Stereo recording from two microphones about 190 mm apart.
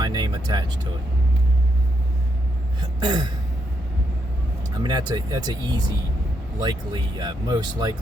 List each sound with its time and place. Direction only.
0.0 s speech: 20° right (ahead or behind)
3.0 s speech: 20° right (ahead or behind)
4.8 s speech: 20° right (ahead or behind)